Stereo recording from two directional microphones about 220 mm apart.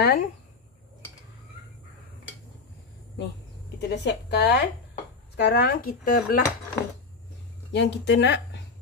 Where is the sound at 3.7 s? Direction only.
50° left (ahead or behind).